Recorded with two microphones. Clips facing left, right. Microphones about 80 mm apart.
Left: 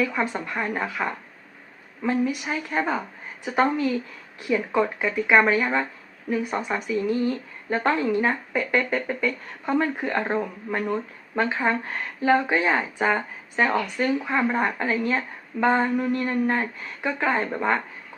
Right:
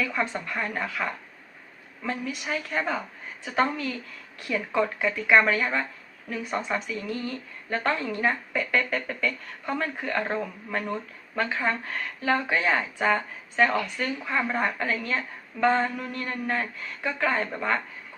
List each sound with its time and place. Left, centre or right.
0.0 s speech: centre